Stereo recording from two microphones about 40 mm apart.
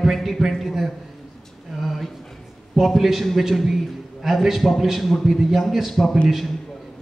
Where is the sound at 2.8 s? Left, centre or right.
Centre.